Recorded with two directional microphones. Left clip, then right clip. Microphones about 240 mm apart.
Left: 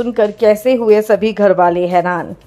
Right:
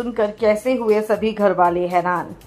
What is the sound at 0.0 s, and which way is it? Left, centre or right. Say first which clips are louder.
A woman's voice: left 6 dB; left.